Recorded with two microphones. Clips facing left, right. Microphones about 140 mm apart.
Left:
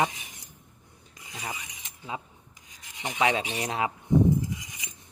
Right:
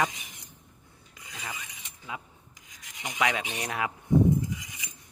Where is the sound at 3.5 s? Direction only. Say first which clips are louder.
Left 3 dB; 25° left (ahead or behind).